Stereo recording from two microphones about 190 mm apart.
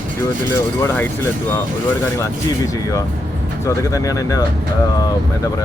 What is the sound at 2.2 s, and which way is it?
Speech, 15° left (ahead or behind).